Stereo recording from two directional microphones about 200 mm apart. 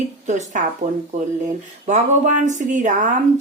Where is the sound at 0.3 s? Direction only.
35° right (ahead or behind).